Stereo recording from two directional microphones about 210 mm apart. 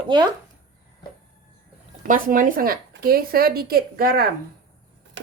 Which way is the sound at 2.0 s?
40° right (ahead or behind).